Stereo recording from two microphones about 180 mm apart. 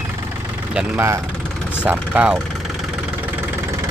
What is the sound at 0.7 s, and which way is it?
Speech, 5° right (ahead or behind).